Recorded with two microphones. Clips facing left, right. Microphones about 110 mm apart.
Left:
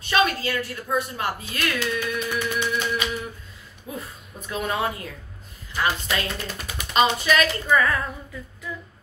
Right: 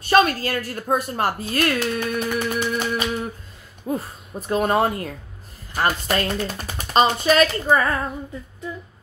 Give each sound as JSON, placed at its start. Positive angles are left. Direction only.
{"t": 0.1, "sound": "a woman's voice", "side_deg": -45}